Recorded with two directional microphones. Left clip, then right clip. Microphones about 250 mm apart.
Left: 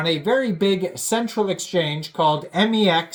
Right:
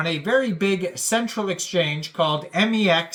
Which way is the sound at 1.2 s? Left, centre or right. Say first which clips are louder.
Left 3 dB; centre.